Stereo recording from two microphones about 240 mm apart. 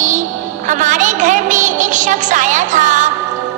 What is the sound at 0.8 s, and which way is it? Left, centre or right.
Music, right.